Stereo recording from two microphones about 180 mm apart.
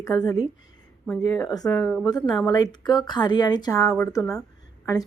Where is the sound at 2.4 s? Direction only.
20° left (ahead or behind).